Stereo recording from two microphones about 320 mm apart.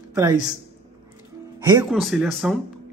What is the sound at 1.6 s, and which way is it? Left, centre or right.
Speech, centre.